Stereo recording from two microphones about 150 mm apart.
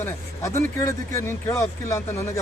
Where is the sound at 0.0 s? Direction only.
20° left (ahead or behind).